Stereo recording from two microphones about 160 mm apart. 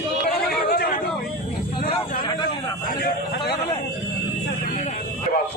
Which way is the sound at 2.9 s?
70° left (ahead or behind).